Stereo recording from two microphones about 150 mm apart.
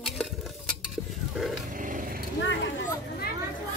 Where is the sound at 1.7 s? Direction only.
60° right (ahead or behind).